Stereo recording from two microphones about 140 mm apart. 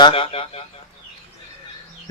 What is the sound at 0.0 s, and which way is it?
Speech, 40° left (ahead or behind).